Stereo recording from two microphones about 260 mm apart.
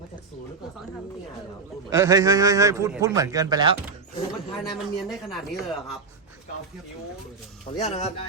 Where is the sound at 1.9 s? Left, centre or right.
Centre.